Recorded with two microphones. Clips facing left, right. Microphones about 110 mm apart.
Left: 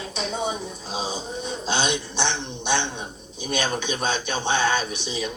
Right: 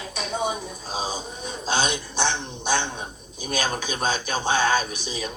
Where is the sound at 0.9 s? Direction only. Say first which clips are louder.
Even; 25° left (ahead or behind).